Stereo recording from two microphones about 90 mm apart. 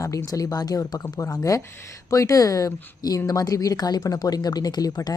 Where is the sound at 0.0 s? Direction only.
35° left (ahead or behind).